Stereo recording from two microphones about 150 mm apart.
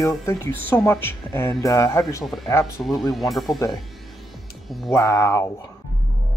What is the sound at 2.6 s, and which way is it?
Speech, centre (ahead or behind).